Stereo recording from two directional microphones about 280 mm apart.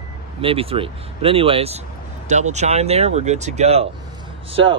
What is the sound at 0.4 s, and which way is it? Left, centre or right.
Speech, centre.